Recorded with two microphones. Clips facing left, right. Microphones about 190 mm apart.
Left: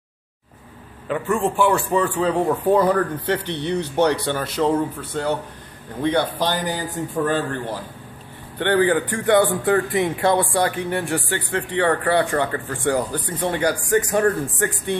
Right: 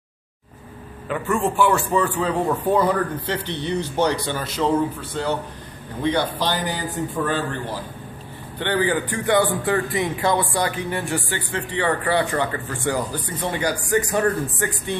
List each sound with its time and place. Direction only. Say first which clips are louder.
1.0 s a man's voice: left 1 dB; 30° left (ahead or behind)
3.3 s a man's voice: left 3 dB; 60° left (ahead or behind)
5.1 s a man's voice: left 2 dB; 50° left (ahead or behind)